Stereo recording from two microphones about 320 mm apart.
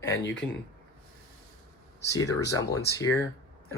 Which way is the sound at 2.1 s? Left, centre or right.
Centre.